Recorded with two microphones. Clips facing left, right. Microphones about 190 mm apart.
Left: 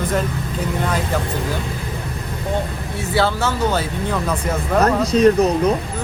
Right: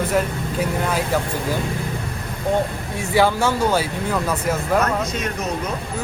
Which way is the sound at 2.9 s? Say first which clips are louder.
Right 1 dB; 15° right (ahead or behind).